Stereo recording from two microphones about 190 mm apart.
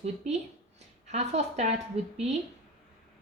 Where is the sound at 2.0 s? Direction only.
30° right (ahead or behind).